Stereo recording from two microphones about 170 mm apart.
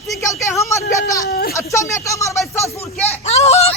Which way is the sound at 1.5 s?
15° left (ahead or behind).